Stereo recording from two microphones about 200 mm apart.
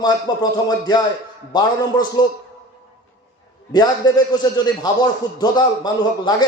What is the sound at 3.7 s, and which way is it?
A man's voice, 20° left (ahead or behind).